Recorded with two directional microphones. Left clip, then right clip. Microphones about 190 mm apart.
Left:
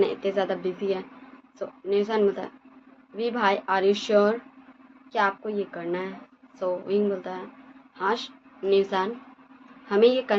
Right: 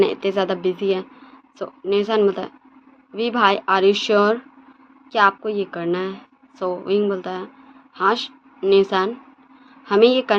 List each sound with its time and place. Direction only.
0.0 s a woman's voice: 65° right (ahead or behind)